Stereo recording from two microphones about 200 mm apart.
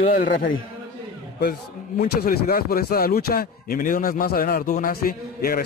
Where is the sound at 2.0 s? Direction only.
45° left (ahead or behind).